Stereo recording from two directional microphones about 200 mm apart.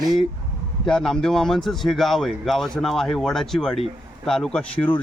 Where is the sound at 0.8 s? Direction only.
5° left (ahead or behind).